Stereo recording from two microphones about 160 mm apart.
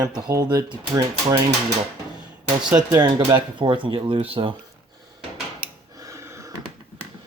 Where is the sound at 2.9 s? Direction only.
30° right (ahead or behind).